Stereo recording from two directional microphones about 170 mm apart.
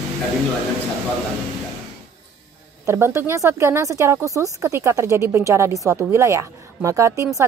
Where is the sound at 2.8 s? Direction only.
15° right (ahead or behind).